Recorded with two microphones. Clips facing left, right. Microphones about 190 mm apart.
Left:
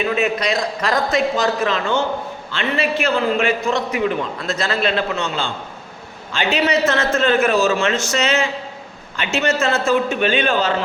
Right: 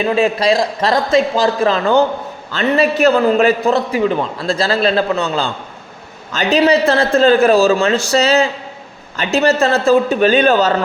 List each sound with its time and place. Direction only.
0.0 s a man's voice: 30° right (ahead or behind)